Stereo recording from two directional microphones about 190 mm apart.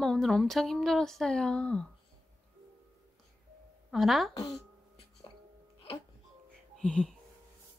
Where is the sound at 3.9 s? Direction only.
Centre (ahead or behind).